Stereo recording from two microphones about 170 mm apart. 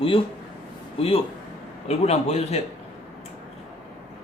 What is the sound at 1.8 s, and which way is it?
Speech, 40° left (ahead or behind).